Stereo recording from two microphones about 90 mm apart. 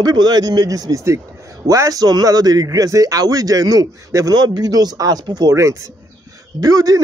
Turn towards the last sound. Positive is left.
turn(degrees=-40)  # may be behind; listen again after turning